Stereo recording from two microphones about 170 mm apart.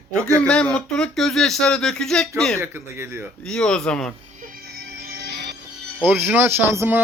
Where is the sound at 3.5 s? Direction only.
5° left (ahead or behind).